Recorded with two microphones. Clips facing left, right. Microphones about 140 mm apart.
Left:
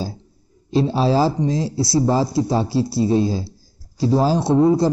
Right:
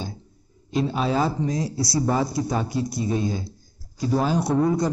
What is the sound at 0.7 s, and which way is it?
A man's voice, 30° left (ahead or behind).